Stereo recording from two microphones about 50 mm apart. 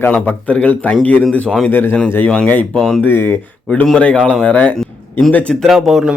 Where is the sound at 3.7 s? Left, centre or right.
Left.